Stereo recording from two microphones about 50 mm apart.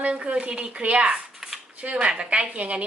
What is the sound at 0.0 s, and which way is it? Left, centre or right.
A woman's voice, right.